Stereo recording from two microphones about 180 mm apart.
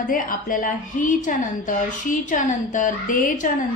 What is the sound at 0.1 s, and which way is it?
A woman's voice, 50° left (ahead or behind).